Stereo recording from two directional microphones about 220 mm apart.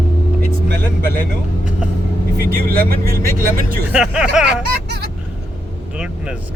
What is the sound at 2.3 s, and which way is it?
Speech, 40° right (ahead or behind).